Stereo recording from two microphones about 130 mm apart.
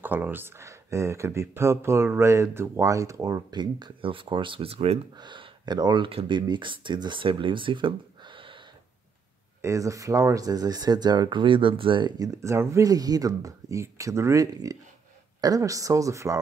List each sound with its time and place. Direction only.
0.0 s speech: 15° right (ahead or behind); by 5.0 s 50° right (ahead or behind)
5.1 s speech: 35° right (ahead or behind)
9.6 s speech: 25° right (ahead or behind)
12.4 s speech: 20° right (ahead or behind)